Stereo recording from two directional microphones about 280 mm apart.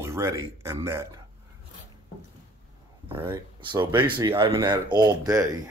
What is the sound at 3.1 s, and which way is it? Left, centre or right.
Speech, centre.